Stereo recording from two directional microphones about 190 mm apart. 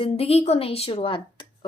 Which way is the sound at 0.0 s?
30° left (ahead or behind).